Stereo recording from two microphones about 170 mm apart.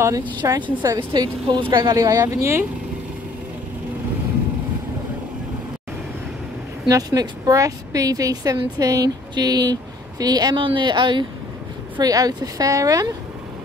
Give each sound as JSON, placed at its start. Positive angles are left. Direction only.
{"t": 0.4, "sound": "a woman's voice", "side_deg": -25}
{"t": 6.9, "sound": "a woman's voice", "side_deg": -20}